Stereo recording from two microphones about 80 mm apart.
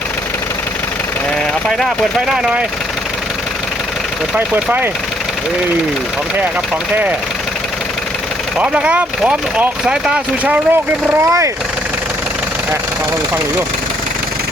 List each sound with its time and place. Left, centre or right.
2.2 s speech: centre
4.4 s speech: right
8.5 s speech: centre
10.4 s speech: centre
11.3 s speech: right